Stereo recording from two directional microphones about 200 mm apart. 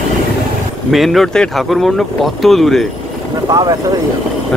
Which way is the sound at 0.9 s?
Centre (ahead or behind).